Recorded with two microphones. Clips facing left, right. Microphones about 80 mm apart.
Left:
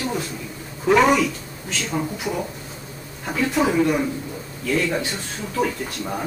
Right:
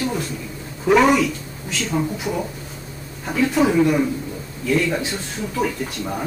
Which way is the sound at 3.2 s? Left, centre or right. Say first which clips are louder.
Right 3 dB; centre.